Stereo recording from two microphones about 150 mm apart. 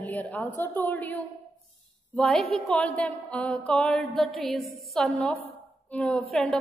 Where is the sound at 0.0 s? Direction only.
10° left (ahead or behind).